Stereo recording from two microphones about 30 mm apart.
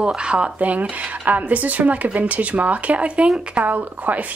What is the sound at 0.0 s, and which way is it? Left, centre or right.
Speech, right.